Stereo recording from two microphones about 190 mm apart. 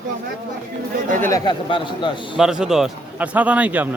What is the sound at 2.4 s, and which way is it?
A man's voice, 5° right (ahead or behind).